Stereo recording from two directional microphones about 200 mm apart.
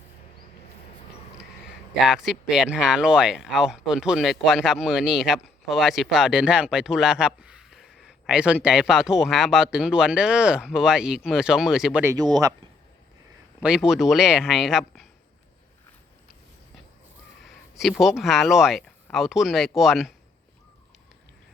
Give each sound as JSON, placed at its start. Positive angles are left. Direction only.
{"t": 2.0, "sound": "speech", "side_deg": 0}
{"t": 12.1, "sound": "speech", "side_deg": -20}
{"t": 13.6, "sound": "speech", "side_deg": -5}
{"t": 17.4, "sound": "a sound", "side_deg": 0}
{"t": 18.0, "sound": "speech", "side_deg": 0}